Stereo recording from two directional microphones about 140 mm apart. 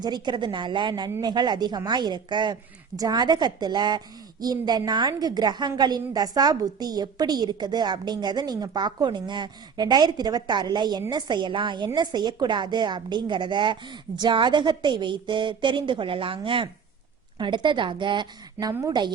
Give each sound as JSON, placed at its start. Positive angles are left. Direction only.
{"t": 0.0, "sound": "speech", "side_deg": -30}
{"t": 18.7, "sound": "a woman's voice", "side_deg": -25}